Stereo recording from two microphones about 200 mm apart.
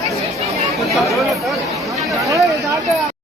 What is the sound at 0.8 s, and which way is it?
Chatter, centre (ahead or behind).